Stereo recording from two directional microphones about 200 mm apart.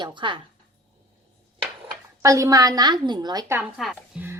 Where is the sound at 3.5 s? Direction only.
5° right (ahead or behind).